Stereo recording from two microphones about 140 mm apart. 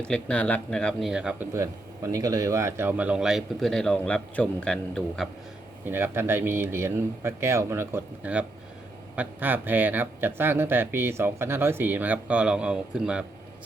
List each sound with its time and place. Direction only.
0.1 s speech: 10° left (ahead or behind); by 1.5 s 5° right (ahead or behind)
1.5 s a man's voice: 20° right (ahead or behind); by 5.3 s 5° left (ahead or behind)
5.8 s a man's voice: 15° right (ahead or behind)